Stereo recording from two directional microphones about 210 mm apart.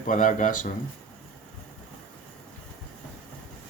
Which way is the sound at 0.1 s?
40° left (ahead or behind).